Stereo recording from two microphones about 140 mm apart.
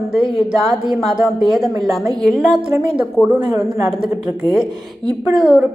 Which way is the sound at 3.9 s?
5° right (ahead or behind).